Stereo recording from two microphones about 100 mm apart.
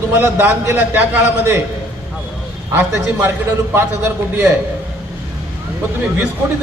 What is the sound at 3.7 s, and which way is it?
Speech, 25° right (ahead or behind).